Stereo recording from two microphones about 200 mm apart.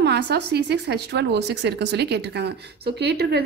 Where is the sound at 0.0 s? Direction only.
55° right (ahead or behind).